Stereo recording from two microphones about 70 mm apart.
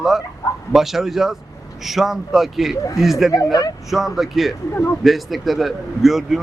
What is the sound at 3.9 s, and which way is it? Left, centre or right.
Speech, centre.